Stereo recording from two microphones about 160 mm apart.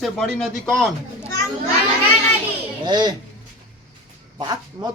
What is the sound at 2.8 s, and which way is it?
Speech, 25° right (ahead or behind).